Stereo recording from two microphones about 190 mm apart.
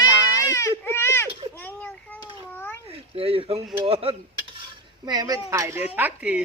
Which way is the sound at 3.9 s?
30° right (ahead or behind).